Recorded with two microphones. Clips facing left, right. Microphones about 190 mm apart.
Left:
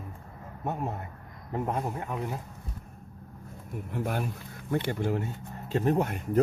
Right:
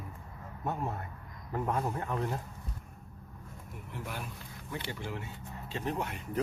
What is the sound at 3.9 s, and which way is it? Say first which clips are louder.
Speech: left 10 dB; 50° left (ahead or behind).